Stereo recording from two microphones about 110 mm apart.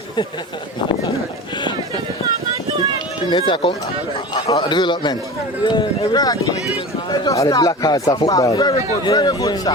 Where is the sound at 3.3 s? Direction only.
45° left (ahead or behind).